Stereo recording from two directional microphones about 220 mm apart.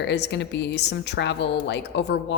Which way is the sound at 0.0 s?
50° left (ahead or behind).